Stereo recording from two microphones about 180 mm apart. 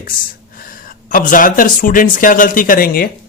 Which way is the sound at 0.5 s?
50° left (ahead or behind).